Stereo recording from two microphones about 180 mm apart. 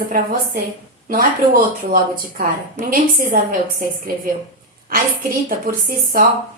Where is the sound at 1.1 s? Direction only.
50° right (ahead or behind).